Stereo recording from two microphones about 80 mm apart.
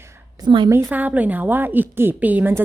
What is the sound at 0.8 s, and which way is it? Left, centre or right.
A woman's voice, right.